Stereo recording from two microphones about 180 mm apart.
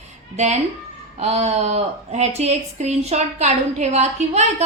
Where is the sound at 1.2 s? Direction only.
40° right (ahead or behind).